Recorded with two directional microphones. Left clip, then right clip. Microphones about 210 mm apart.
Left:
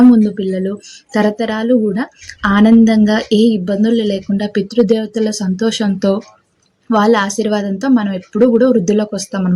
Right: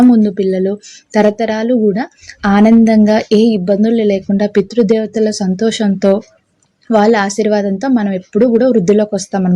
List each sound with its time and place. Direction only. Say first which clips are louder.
0.1 s speech: right 2 dB; 20° right (ahead or behind)